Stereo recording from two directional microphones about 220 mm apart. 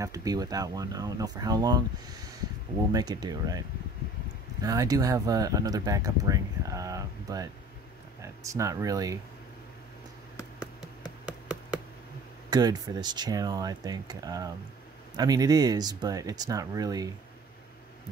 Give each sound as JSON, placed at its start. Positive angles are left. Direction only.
{"t": 0.0, "sound": "speech", "side_deg": -15}
{"t": 2.9, "sound": "speech", "side_deg": -15}
{"t": 11.2, "sound": "a sound", "side_deg": -5}
{"t": 12.4, "sound": "speech", "side_deg": -20}